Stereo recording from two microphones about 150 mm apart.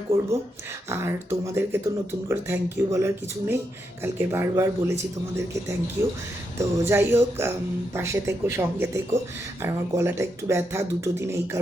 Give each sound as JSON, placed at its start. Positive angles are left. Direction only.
{"t": 0.9, "sound": "speech", "side_deg": -15}
{"t": 6.0, "sound": "speech", "side_deg": -15}